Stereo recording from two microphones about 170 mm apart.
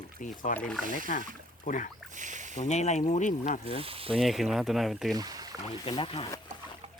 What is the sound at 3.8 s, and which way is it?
Speech, 35° right (ahead or behind).